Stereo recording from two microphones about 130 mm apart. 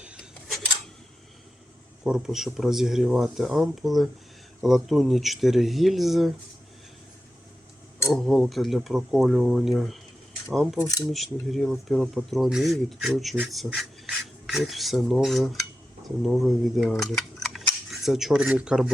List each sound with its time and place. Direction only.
0.0 s cutlery: 10° right (ahead or behind)
2.0 s speech: 5° right (ahead or behind)
8.1 s speech: centre (ahead or behind)
10.8 s speech: 25° left (ahead or behind)
11.0 s speech: centre (ahead or behind)
13.5 s filing: centre (ahead or behind)
16.2 s cutlery: centre (ahead or behind)